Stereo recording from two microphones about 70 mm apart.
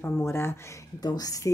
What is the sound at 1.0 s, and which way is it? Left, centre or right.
Speech, left.